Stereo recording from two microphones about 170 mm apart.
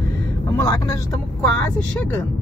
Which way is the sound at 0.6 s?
20° left (ahead or behind).